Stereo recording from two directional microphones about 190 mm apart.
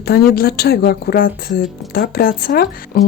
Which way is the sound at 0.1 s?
55° left (ahead or behind).